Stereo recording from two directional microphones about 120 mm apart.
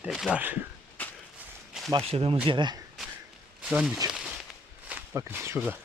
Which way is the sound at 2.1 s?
55° right (ahead or behind).